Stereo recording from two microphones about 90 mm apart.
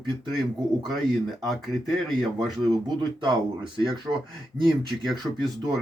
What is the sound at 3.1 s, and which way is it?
Speech, 60° right (ahead or behind).